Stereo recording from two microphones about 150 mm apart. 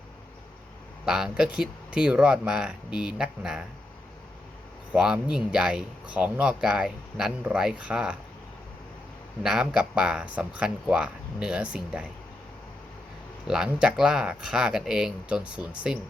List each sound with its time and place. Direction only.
1.0 s speech: 5° right (ahead or behind)
4.9 s speech: 10° right (ahead or behind)
9.4 s speech: 5° right (ahead or behind)
13.5 s speech: 5° right (ahead or behind)